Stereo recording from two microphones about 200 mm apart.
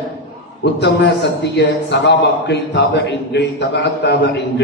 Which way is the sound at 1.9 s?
60° left (ahead or behind).